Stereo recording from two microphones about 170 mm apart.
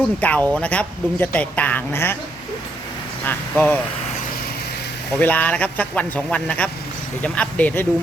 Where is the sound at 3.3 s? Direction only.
10° left (ahead or behind).